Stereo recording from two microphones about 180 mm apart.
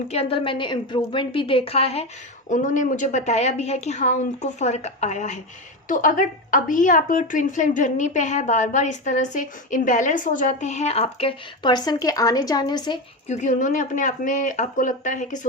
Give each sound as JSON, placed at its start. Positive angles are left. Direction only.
{"t": 0.1, "sound": "a woman's voice", "side_deg": 30}
{"t": 2.5, "sound": "a woman's voice", "side_deg": 45}
{"t": 13.2, "sound": "a woman's voice", "side_deg": 40}